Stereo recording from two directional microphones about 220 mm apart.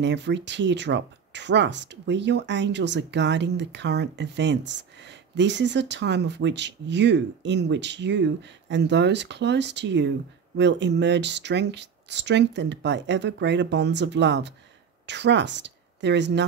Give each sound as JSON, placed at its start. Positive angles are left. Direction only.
{"t": 0.0, "sound": "speech", "side_deg": -50}